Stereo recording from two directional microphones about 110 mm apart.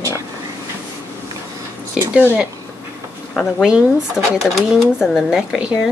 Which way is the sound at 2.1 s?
10° right (ahead or behind).